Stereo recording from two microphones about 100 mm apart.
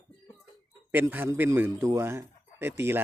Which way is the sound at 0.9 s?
20° right (ahead or behind).